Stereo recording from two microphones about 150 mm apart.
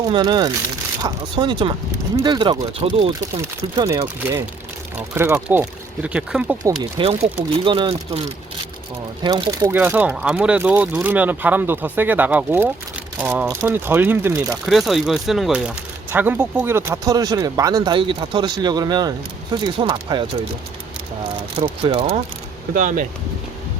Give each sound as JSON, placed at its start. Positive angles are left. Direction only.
{"t": 0.0, "sound": "speech", "side_deg": -30}
{"t": 4.0, "sound": "speech", "side_deg": -15}
{"t": 7.0, "sound": "speech", "side_deg": -40}
{"t": 9.2, "sound": "speech", "side_deg": -25}
{"t": 9.7, "sound": "speech", "side_deg": -15}
{"t": 14.4, "sound": "speech", "side_deg": 0}
{"t": 21.8, "sound": "speech", "side_deg": -35}
{"t": 22.7, "sound": "speech", "side_deg": -60}